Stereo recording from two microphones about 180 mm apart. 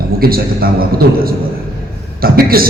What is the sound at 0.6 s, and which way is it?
Speech, 55° right (ahead or behind).